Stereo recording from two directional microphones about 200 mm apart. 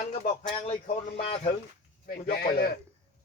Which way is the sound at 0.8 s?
40° left (ahead or behind).